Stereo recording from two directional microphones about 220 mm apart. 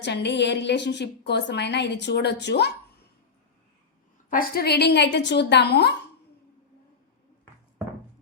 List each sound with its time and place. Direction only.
0.0 s a woman's voice: 50° left (ahead or behind)
4.3 s a woman's voice: 40° left (ahead or behind)